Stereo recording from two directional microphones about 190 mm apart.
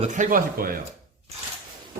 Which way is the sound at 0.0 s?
40° right (ahead or behind).